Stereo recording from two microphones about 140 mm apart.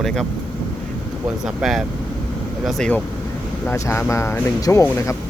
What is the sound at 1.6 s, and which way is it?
Speech, centre (ahead or behind).